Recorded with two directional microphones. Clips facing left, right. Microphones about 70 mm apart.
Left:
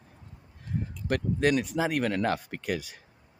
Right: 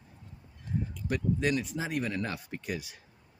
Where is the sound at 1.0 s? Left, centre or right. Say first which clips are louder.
Left 4 dB; left.